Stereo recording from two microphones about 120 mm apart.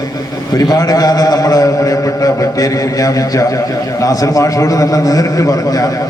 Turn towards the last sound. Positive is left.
turn(degrees=30)  # may be behind; listen again after turning